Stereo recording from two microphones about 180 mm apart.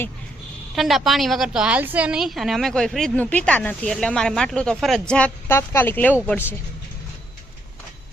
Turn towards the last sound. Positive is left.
turn(degrees=10)  # may be behind; listen again after turning